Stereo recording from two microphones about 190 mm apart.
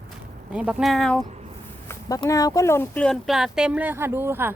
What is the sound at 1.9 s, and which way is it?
A woman's voice, 20° left (ahead or behind).